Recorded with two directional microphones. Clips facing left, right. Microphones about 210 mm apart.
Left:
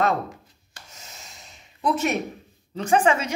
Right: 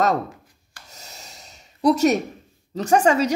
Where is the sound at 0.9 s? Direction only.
40° right (ahead or behind).